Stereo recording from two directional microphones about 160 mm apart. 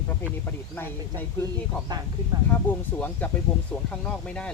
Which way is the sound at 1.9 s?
25° right (ahead or behind).